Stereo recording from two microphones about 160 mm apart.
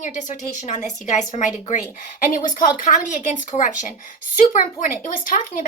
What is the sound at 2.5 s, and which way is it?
A woman's voice, 55° left (ahead or behind).